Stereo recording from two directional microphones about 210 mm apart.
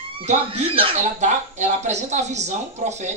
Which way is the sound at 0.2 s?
30° right (ahead or behind).